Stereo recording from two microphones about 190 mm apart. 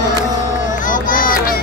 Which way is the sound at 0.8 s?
45° left (ahead or behind).